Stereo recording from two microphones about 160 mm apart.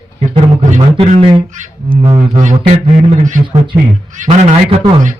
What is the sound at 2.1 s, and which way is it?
Speech, 45° right (ahead or behind).